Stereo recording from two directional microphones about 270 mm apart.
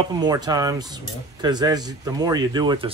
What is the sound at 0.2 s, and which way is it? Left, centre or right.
Speech, centre.